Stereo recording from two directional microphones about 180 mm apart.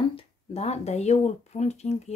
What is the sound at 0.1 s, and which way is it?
Speech, 30° left (ahead or behind).